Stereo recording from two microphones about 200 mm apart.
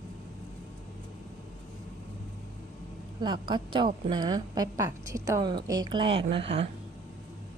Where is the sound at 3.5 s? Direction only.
25° right (ahead or behind).